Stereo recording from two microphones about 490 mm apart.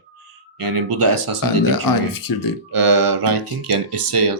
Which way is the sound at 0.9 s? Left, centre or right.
Right.